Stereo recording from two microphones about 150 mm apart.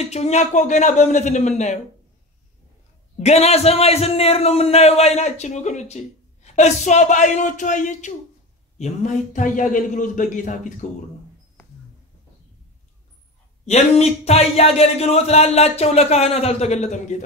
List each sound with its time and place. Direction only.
0.0 s a man's voice: 45° left (ahead or behind)
3.2 s a man's voice: 45° left (ahead or behind)
13.7 s a man's voice: 45° left (ahead or behind)